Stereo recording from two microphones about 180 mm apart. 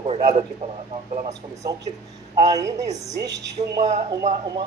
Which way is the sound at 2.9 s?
40° right (ahead or behind).